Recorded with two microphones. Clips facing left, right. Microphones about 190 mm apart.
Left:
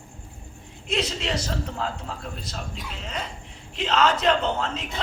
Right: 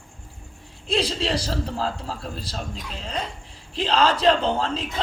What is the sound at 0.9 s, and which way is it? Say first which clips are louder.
A man's voice: right 3 dB; 30° right (ahead or behind).